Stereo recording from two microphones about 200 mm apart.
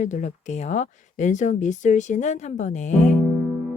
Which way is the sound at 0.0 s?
35° left (ahead or behind).